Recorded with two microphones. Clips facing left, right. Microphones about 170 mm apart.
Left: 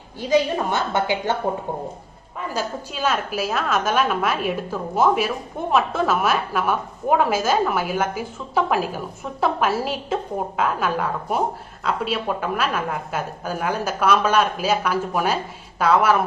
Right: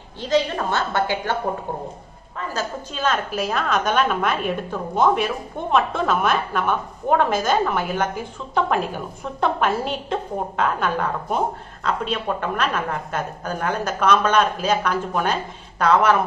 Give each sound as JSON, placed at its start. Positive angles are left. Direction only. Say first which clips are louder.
{"t": 0.2, "sound": "a woman's voice", "louder": "left 1 dB", "side_deg": 10}
{"t": 2.5, "sound": "a woman's voice", "louder": "left 1 dB", "side_deg": 10}